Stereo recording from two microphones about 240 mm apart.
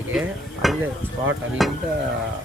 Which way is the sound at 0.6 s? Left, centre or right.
Centre.